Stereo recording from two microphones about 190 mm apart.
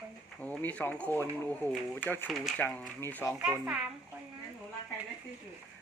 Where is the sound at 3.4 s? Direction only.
10° right (ahead or behind).